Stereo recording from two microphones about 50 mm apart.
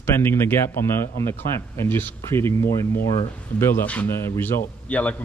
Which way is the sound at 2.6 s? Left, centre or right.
Left.